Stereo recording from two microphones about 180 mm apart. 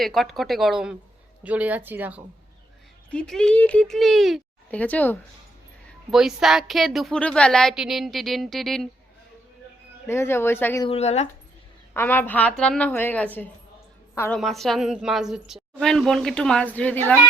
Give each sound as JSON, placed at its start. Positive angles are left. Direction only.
{"t": 0.0, "sound": "a woman's voice", "side_deg": 0}
{"t": 3.1, "sound": "a woman's voice", "side_deg": 5}
{"t": 6.1, "sound": "a woman's voice", "side_deg": 0}
{"t": 10.1, "sound": "a woman's voice", "side_deg": 15}
{"t": 10.8, "sound": "speech", "side_deg": 35}
{"t": 11.9, "sound": "a woman's voice", "side_deg": 10}